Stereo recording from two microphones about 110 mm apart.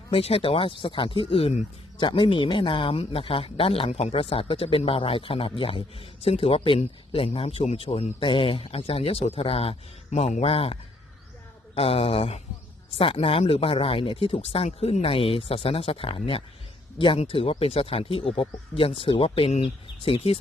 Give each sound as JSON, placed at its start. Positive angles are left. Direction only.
{"t": 0.1, "sound": "speech", "side_deg": 65}
{"t": 8.2, "sound": "speech", "side_deg": 50}